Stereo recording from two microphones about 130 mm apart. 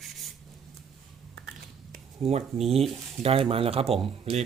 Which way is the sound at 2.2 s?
50° right (ahead or behind).